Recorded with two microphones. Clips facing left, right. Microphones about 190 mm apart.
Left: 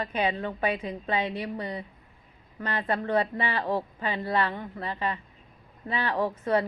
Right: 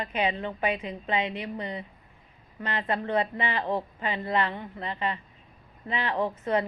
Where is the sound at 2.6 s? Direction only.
25° right (ahead or behind).